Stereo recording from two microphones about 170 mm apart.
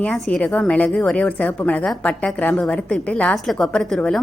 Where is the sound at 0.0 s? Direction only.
5° left (ahead or behind).